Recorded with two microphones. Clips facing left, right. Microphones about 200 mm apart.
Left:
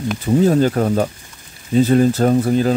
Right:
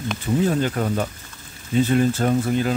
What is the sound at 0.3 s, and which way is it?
Speech, 40° left (ahead or behind).